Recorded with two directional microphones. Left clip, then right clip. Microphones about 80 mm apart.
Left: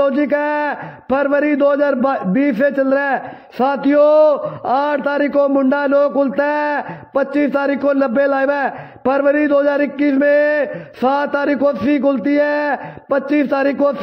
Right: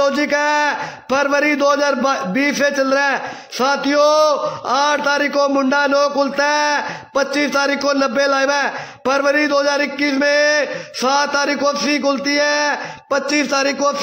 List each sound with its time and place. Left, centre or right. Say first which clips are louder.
0.0 s a man's voice: even; left